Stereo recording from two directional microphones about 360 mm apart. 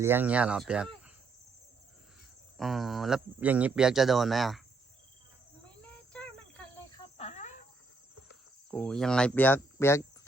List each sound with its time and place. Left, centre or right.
0.0 s speech: centre
2.6 s speech: centre
5.8 s cricket: centre
7.2 s cricket: centre
8.7 s speech: centre